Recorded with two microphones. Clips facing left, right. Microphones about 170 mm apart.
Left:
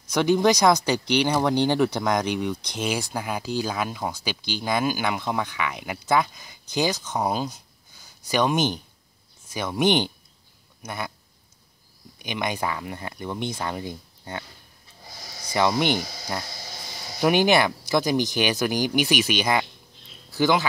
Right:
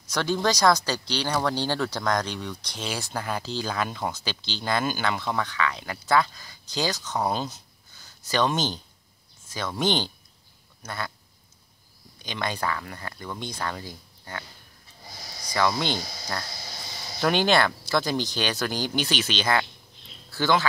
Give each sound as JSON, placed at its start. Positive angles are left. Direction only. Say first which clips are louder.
{"t": 0.1, "sound": "speech", "louder": "left 6 dB", "side_deg": 15}
{"t": 12.2, "sound": "speech", "louder": "left 2 dB", "side_deg": 15}
{"t": 15.5, "sound": "speech", "louder": "left 3 dB", "side_deg": 20}